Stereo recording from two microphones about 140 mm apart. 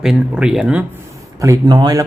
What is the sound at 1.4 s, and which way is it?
Speech, 25° right (ahead or behind).